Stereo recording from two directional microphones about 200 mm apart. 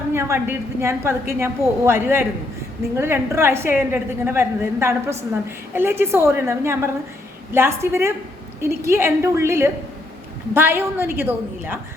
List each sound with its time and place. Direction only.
0.1 s a woman's voice: 15° right (ahead or behind)